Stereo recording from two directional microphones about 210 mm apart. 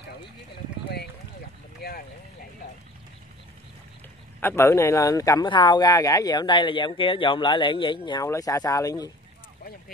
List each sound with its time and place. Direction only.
1.8 s vehicle: 45° left (ahead or behind)
4.4 s speech: 10° left (ahead or behind)